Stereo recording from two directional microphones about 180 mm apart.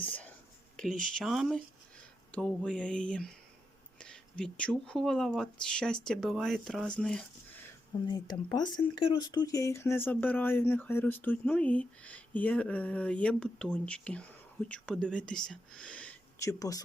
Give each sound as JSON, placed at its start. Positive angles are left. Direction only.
{"t": 0.8, "sound": "speech", "side_deg": 0}
{"t": 8.0, "sound": "speech", "side_deg": 20}
{"t": 16.4, "sound": "speech", "side_deg": 20}